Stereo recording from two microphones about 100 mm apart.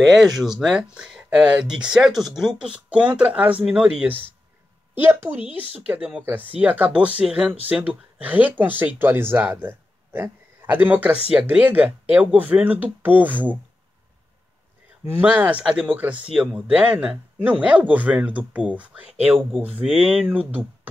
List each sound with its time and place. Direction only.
0.1 s speech: centre (ahead or behind)
5.3 s speech: 20° right (ahead or behind)
15.0 s speech: 20° right (ahead or behind)